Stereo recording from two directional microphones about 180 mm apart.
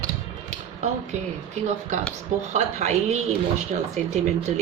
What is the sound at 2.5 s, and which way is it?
A woman's voice, 40° right (ahead or behind).